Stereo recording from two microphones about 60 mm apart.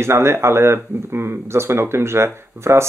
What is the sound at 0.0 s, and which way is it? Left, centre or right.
Speech, right.